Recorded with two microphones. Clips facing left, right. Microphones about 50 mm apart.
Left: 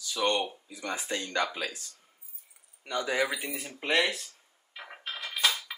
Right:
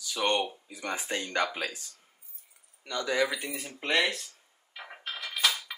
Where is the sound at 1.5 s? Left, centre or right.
Centre.